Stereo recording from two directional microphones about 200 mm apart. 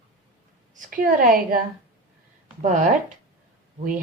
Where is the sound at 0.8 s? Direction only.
45° right (ahead or behind).